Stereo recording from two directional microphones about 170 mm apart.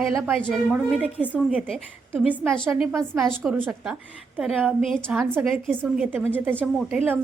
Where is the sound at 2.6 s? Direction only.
10° right (ahead or behind).